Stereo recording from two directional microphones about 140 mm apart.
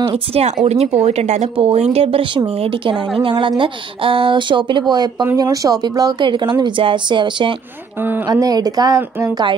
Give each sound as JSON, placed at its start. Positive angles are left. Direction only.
{"t": 0.1, "sound": "a woman's voice", "side_deg": -45}